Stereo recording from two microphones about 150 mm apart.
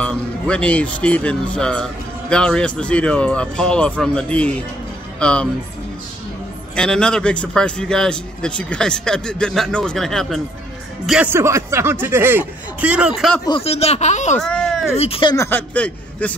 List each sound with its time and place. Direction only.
0.0 s a man's voice: 5° left (ahead or behind)
6.7 s a man's voice: 5° left (ahead or behind)
11.2 s speech: 20° right (ahead or behind)
13.5 s speech: 40° left (ahead or behind)
14.4 s a sound: 5° left (ahead or behind)
15.0 s speech: 40° left (ahead or behind)
15.3 s speech: 20° left (ahead or behind)
15.7 s a man's voice: 10° left (ahead or behind)